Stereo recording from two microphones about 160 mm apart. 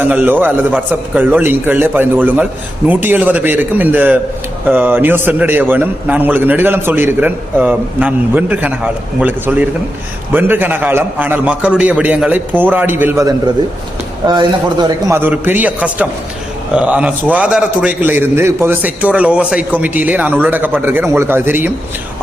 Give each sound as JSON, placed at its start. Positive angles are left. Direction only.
{"t": 0.0, "sound": "a man's voice", "side_deg": -10}
{"t": 15.1, "sound": "a man's voice", "side_deg": -15}